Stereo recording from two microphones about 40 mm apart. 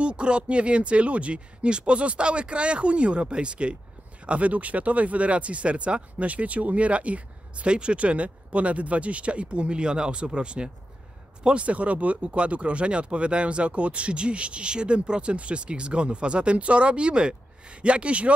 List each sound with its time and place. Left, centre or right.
0.0 s speech: right